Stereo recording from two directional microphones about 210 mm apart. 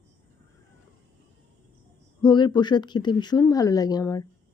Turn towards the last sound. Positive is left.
turn(degrees=15)  # may be behind; listen again after turning